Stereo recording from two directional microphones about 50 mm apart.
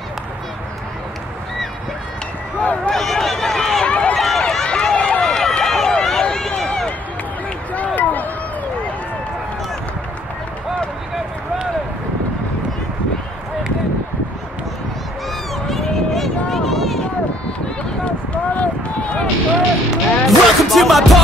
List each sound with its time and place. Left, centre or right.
2.6 s speech: left
2.9 s a sound: centre
3.8 s run: centre
4.2 s run: centre
4.6 s run: centre
7.7 s run: left
15.7 s a sound: centre
18.0 s run: left
19.9 s music: centre